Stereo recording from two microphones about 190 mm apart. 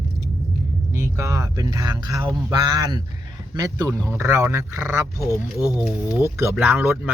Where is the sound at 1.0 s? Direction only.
15° right (ahead or behind).